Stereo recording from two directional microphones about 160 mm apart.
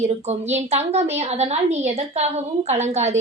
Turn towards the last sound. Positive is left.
turn(degrees=-45)  # may be behind; listen again after turning